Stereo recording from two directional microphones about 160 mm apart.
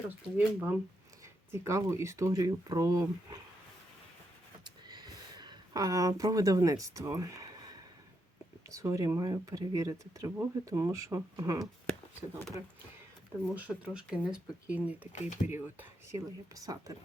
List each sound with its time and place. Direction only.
0.3 s speech: 10° right (ahead or behind)
4.6 s a sound: 25° right (ahead or behind)
8.7 s speech: 20° right (ahead or behind)
13.6 s speech: 10° right (ahead or behind)
15.1 s speech: 50° left (ahead or behind)
15.5 s speech: 15° right (ahead or behind)